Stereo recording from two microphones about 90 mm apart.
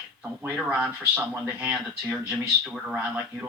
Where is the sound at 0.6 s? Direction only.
10° right (ahead or behind).